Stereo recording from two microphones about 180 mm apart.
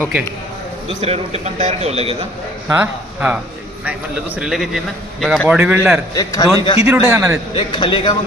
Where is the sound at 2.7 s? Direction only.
10° right (ahead or behind).